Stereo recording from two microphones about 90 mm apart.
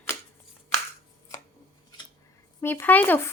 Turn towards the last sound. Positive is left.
turn(degrees=20)  # may be behind; listen again after turning